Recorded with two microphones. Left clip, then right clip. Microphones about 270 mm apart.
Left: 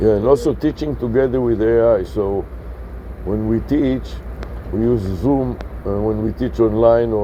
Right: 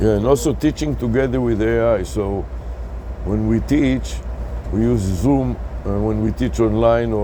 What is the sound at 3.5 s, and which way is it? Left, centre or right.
Speech, right.